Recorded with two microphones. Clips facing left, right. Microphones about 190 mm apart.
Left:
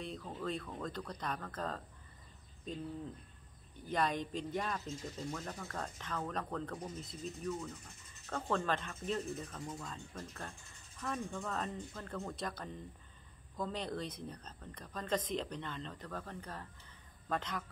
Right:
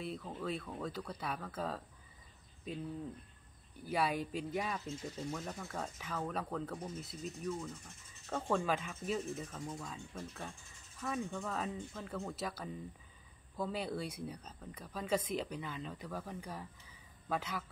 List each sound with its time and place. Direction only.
0.0 s speech: 5° right (ahead or behind)